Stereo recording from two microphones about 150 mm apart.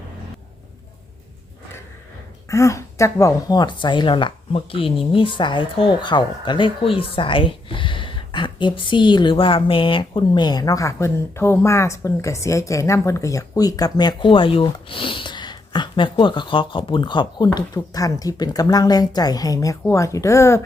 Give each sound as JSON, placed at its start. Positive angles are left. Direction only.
{"t": 2.5, "sound": "speech", "side_deg": 20}